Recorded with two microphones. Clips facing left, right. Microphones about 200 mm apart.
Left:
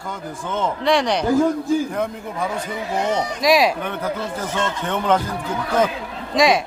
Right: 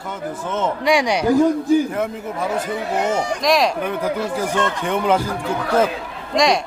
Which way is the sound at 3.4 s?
5° left (ahead or behind).